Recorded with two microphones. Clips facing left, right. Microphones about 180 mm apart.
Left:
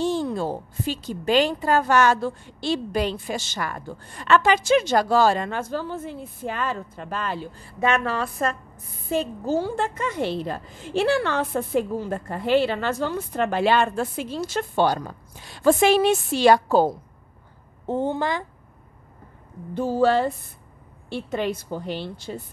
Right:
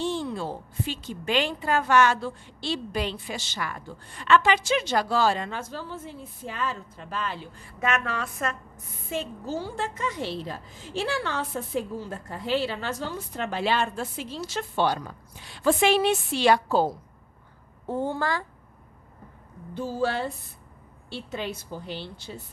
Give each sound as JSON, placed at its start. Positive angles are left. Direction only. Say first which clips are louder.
{"t": 0.0, "sound": "a woman's voice", "louder": "left 5 dB", "side_deg": 40}
{"t": 7.5, "sound": "a woman's voice", "louder": "left 5 dB", "side_deg": 30}
{"t": 9.6, "sound": "a woman's voice", "louder": "left 6 dB", "side_deg": 55}
{"t": 17.8, "sound": "a woman's voice", "louder": "left 3 dB", "side_deg": 20}
{"t": 19.7, "sound": "a woman's voice", "louder": "left 7 dB", "side_deg": 55}